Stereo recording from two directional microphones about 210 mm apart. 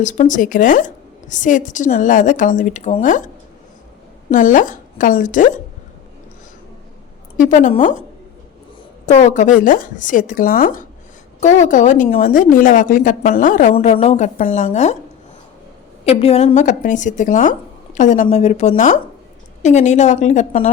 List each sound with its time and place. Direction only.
0.0 s a woman's voice: 35° left (ahead or behind)
4.3 s a woman's voice: 40° left (ahead or behind)
7.3 s a woman's voice: 35° left (ahead or behind)
9.0 s a woman's voice: 35° left (ahead or behind)
16.0 s a woman's voice: 30° left (ahead or behind)